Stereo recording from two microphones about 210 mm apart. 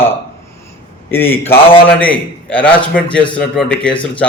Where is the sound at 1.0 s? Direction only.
10° left (ahead or behind).